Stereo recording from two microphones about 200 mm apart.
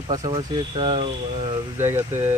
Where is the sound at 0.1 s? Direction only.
25° right (ahead or behind).